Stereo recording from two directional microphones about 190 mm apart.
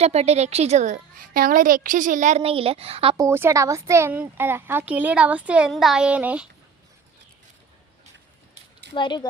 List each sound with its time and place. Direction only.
0.0 s a woman's voice: 35° right (ahead or behind)
3.2 s speech: 15° right (ahead or behind)
9.0 s speech: 25° left (ahead or behind)